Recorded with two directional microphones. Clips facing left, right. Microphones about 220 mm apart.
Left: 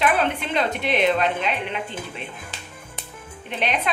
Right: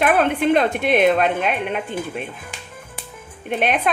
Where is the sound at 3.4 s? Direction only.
50° right (ahead or behind).